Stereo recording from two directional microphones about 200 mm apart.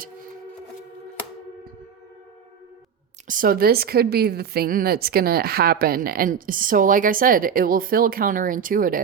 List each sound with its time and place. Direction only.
3.2 s a woman's voice: 45° right (ahead or behind)